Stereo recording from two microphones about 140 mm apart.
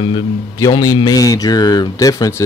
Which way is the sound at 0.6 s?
30° left (ahead or behind).